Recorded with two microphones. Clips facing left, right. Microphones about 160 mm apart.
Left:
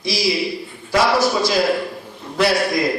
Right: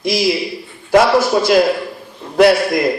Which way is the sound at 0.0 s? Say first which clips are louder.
Right 6 dB; 55° right (ahead or behind).